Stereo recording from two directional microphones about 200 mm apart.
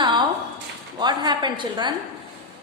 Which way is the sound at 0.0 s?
20° right (ahead or behind).